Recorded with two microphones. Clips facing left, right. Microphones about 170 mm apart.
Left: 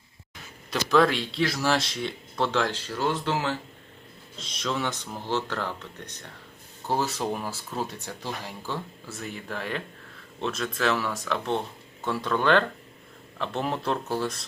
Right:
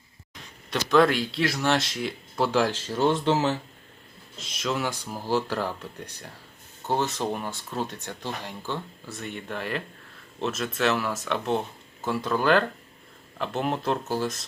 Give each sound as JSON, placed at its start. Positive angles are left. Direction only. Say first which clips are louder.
{"t": 0.7, "sound": "speech", "louder": "right 1 dB", "side_deg": 0}
{"t": 4.4, "sound": "speech", "louder": "right 1 dB", "side_deg": -5}